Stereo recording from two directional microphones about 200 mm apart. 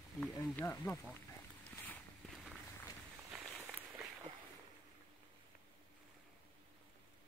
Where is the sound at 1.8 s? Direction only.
Centre (ahead or behind).